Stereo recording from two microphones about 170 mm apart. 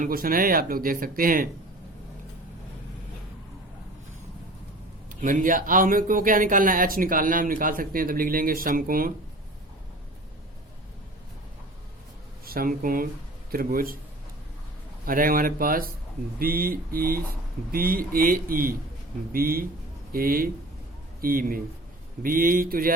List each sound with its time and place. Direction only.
0.0 s speech: 60° right (ahead or behind)
5.2 s speech: 50° right (ahead or behind)
12.5 s speech: 60° right (ahead or behind)
15.0 s speech: 55° right (ahead or behind)